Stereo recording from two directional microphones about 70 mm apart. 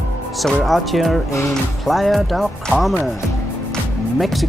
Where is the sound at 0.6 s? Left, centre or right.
Centre.